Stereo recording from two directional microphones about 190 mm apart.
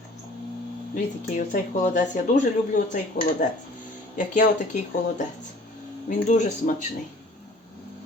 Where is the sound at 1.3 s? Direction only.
40° left (ahead or behind).